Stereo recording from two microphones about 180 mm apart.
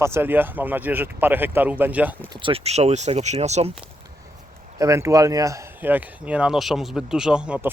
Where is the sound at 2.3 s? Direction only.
30° right (ahead or behind).